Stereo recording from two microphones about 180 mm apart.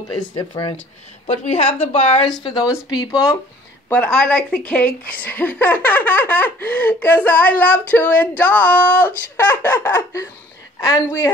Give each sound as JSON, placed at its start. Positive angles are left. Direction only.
{"t": 0.1, "sound": "speech", "side_deg": 25}
{"t": 1.2, "sound": "a woman's voice", "side_deg": 35}
{"t": 2.4, "sound": "speech", "side_deg": 20}
{"t": 3.9, "sound": "a woman's voice", "side_deg": 5}